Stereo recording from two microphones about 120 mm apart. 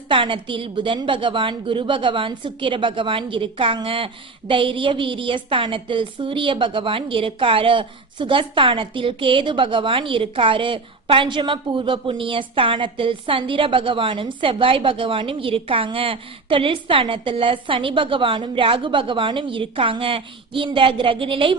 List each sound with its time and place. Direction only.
0.1 s a woman's voice: 45° right (ahead or behind)